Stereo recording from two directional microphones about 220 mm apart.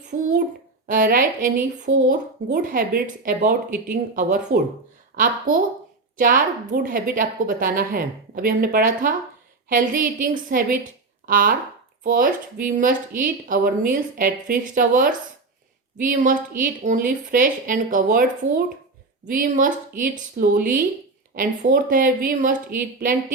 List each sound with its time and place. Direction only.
0.1 s a woman's voice: 35° right (ahead or behind)